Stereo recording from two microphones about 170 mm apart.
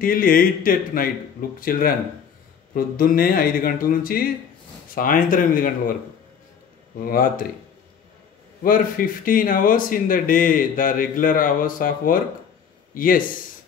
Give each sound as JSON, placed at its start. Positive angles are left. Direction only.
{"t": 0.0, "sound": "speech", "side_deg": 55}
{"t": 7.0, "sound": "speech", "side_deg": 55}
{"t": 8.6, "sound": "speech", "side_deg": 55}